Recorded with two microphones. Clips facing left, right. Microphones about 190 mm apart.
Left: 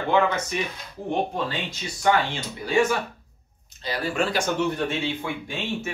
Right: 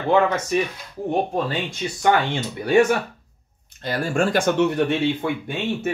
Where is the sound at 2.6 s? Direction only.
60° right (ahead or behind).